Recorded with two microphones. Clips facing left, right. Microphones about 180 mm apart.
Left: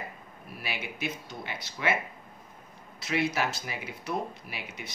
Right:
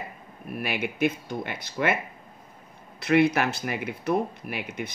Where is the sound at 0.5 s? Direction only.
55° right (ahead or behind).